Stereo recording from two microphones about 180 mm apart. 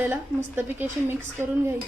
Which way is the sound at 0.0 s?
10° right (ahead or behind).